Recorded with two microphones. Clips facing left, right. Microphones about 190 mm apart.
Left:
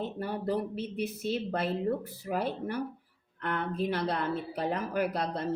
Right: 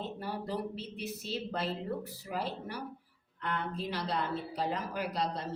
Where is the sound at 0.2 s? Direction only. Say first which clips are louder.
Left 6 dB; 55° left (ahead or behind).